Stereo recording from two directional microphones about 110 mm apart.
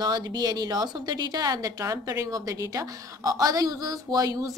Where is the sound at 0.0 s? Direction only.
40° right (ahead or behind).